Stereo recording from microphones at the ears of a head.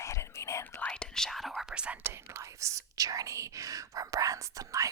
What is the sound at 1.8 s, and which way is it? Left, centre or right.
Whispering, right.